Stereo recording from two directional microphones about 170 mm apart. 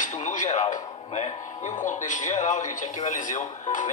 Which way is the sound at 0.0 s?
50° left (ahead or behind).